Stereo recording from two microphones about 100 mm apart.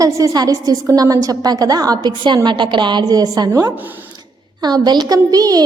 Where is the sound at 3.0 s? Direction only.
40° right (ahead or behind).